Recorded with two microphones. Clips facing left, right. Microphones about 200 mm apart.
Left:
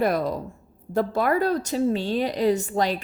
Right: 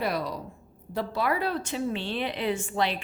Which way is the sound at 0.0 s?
50° left (ahead or behind).